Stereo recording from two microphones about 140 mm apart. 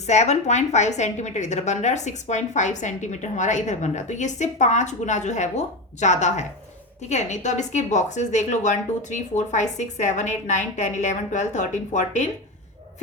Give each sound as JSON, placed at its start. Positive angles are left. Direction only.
{"t": 0.0, "sound": "a woman's voice", "side_deg": 55}